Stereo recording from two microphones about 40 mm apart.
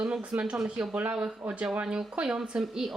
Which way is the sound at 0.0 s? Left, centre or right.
Right.